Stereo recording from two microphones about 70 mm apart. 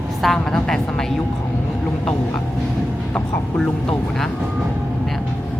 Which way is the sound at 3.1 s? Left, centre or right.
Centre.